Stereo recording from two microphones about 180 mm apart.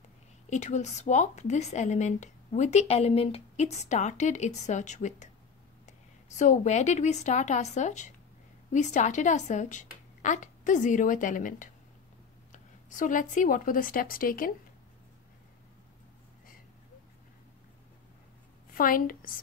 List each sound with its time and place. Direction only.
0.5 s speech: 40° left (ahead or behind)
18.8 s speech: 50° left (ahead or behind)